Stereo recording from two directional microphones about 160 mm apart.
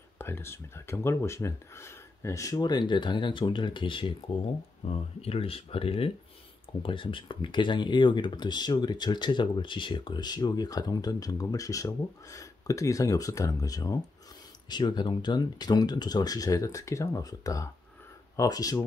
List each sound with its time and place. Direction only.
0.2 s speech: 15° left (ahead or behind)